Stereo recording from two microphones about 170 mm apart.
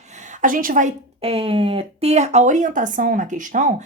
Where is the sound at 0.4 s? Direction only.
55° right (ahead or behind).